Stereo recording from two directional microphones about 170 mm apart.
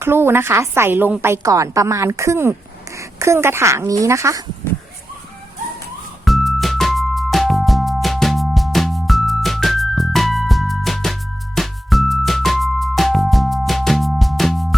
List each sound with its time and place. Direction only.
0.0 s a woman's voice: 15° right (ahead or behind)
6.2 s music: centre (ahead or behind)